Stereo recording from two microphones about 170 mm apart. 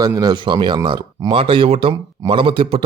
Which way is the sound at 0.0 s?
20° right (ahead or behind).